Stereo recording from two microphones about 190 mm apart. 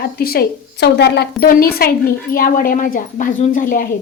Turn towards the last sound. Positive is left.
turn(degrees=45)  # may be behind; listen again after turning